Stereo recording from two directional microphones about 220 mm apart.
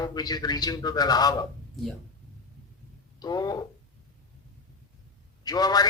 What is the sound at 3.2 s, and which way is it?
Speech, 20° left (ahead or behind).